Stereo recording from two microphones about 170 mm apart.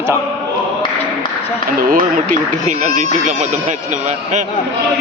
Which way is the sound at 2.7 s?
45° right (ahead or behind).